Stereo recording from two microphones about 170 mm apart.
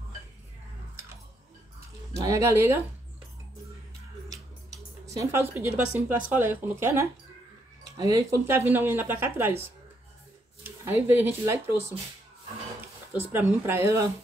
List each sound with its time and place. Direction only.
2.1 s speech: 20° right (ahead or behind)
5.0 s speech: 20° right (ahead or behind)
10.6 s speech: 10° right (ahead or behind)
13.1 s speech: 10° right (ahead or behind)